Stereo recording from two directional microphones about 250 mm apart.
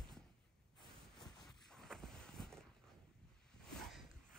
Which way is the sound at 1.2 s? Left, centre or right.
Centre.